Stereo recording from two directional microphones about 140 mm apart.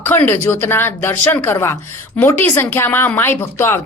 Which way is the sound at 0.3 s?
15° left (ahead or behind).